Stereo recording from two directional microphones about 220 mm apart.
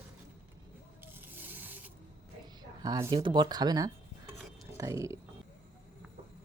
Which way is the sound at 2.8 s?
20° right (ahead or behind).